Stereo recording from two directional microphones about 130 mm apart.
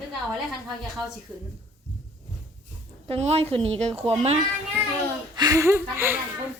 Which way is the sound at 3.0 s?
55° right (ahead or behind).